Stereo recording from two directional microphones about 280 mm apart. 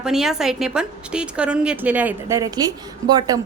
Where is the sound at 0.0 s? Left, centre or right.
Centre.